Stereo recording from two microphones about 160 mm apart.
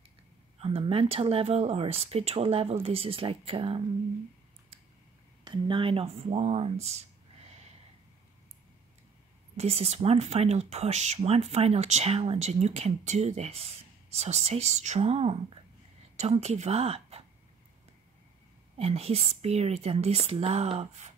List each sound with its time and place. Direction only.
0.6 s speech: 35° right (ahead or behind)
5.4 s speech: 30° right (ahead or behind)
9.6 s speech: 40° right (ahead or behind)
18.8 s speech: 40° right (ahead or behind)